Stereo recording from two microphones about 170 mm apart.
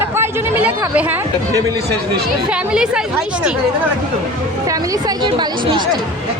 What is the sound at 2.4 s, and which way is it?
Speech, 5° right (ahead or behind).